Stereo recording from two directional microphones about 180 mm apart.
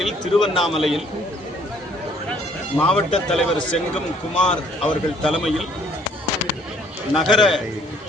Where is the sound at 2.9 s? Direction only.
Centre (ahead or behind).